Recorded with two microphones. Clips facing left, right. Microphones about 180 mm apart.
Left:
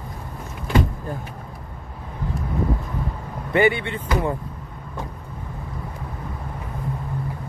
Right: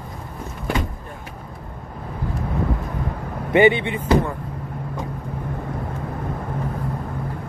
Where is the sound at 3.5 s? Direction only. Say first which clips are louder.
Right 4 dB; 20° right (ahead or behind).